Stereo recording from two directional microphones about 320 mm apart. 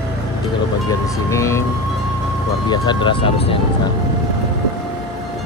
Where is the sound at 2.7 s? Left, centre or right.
Centre.